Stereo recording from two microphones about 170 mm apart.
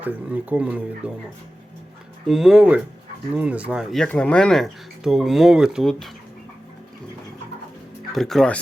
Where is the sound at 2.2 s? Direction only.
5° right (ahead or behind).